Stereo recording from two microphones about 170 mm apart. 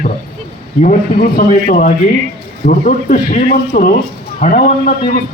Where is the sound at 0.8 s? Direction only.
50° left (ahead or behind).